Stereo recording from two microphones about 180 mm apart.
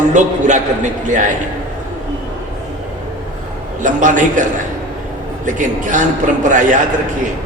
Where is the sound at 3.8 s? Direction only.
45° right (ahead or behind).